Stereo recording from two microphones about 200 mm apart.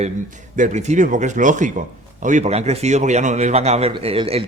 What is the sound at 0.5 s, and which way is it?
A man's voice, 40° right (ahead or behind).